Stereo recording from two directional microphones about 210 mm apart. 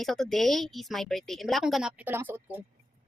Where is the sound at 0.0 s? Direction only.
Centre (ahead or behind).